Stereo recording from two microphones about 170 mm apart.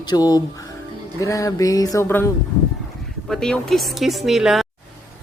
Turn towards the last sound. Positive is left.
turn(degrees=0)  # may be behind; listen again after turning